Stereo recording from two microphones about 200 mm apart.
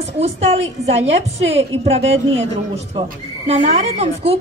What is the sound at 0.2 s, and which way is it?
Speech, 30° right (ahead or behind).